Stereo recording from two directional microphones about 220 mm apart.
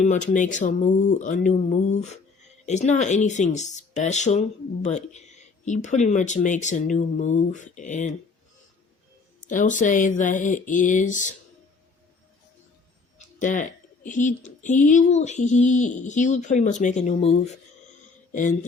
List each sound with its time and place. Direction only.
0.3 s speech: 35° left (ahead or behind)
9.5 s speech: 35° left (ahead or behind)
13.1 s speech: 35° left (ahead or behind)